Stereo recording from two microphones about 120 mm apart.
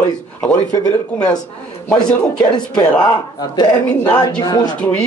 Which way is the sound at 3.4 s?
35° left (ahead or behind).